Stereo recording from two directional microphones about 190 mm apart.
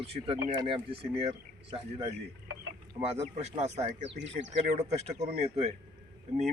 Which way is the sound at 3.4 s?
35° right (ahead or behind).